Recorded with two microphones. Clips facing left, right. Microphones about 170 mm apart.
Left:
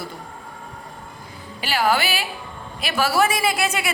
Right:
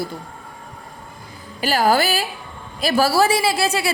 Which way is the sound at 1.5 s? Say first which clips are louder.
Right 4 dB; 40° right (ahead or behind).